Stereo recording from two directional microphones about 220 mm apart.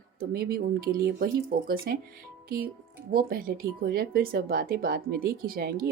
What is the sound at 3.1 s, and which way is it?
Speech, 40° right (ahead or behind).